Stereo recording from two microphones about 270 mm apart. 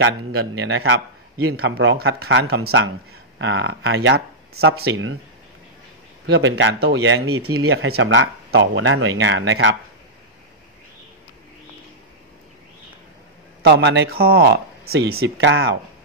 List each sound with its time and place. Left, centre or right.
0.0 s speech: right
6.2 s speech: right
13.6 s speech: right